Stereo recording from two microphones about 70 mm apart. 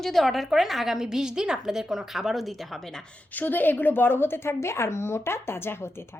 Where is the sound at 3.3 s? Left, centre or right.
Left.